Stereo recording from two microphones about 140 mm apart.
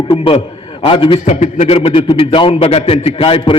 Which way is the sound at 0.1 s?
45° left (ahead or behind).